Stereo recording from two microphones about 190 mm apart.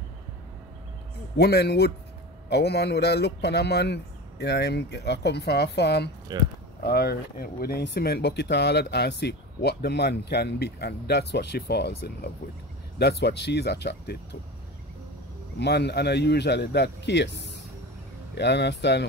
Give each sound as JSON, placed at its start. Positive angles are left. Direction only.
{"t": 1.3, "sound": "speech", "side_deg": 60}
{"t": 15.6, "sound": "speech", "side_deg": 60}